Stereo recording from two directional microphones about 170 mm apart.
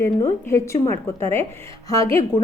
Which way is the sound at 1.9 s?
20° left (ahead or behind).